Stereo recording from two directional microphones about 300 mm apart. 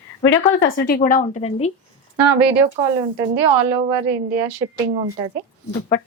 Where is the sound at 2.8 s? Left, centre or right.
Centre.